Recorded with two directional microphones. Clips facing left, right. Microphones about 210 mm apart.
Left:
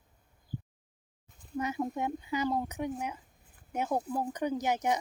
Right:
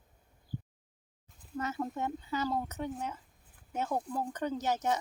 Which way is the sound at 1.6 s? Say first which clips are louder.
Left 3 dB; 15° left (ahead or behind).